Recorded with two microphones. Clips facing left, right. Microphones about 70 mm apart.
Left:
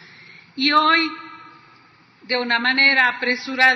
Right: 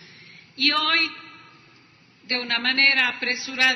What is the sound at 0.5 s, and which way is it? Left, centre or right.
A man's voice, left.